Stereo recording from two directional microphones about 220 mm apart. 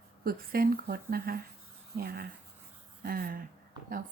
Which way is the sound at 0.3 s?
45° right (ahead or behind).